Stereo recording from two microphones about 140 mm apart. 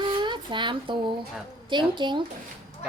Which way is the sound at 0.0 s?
35° right (ahead or behind).